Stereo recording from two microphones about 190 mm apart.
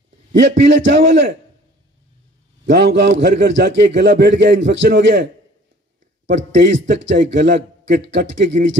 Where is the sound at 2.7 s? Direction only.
60° right (ahead or behind).